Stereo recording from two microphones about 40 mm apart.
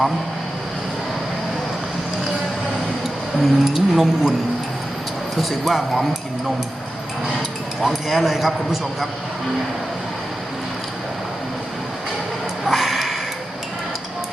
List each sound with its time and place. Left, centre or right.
3.0 s speech: centre
5.4 s speech: centre
7.9 s speech: centre
12.6 s a sound: centre